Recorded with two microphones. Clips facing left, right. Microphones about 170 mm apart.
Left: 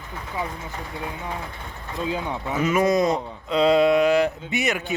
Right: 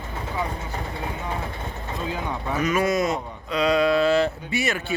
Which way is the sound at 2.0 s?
20° left (ahead or behind).